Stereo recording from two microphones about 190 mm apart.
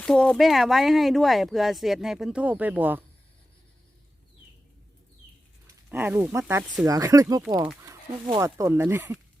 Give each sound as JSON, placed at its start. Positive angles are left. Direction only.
{"t": 0.0, "sound": "speech", "side_deg": 5}
{"t": 5.9, "sound": "speech", "side_deg": -10}